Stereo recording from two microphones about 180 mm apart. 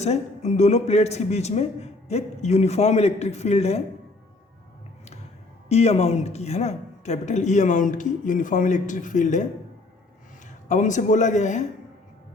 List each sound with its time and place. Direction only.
0.0 s a man's voice: 40° left (ahead or behind)
5.6 s a woman's voice: 35° left (ahead or behind)
10.7 s a woman's voice: 45° left (ahead or behind)